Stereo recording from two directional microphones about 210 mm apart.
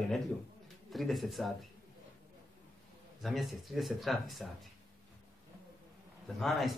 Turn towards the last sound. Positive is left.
turn(degrees=0)  # may be behind; listen again after turning